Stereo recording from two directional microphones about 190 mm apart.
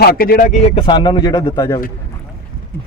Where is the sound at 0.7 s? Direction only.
25° left (ahead or behind).